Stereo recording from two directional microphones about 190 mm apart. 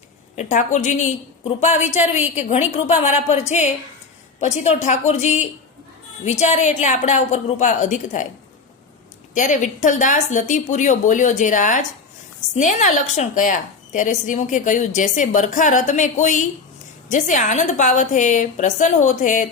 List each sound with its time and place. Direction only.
0.3 s a woman's voice: 40° left (ahead or behind)
9.3 s a woman's voice: 40° left (ahead or behind)